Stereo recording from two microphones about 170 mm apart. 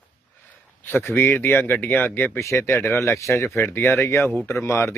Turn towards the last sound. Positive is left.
turn(degrees=15)  # may be behind; listen again after turning